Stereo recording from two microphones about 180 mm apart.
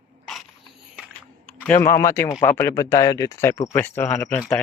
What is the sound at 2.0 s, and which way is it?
Speech, 15° left (ahead or behind).